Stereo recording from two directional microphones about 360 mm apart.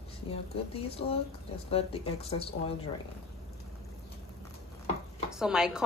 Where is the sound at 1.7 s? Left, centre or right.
Centre.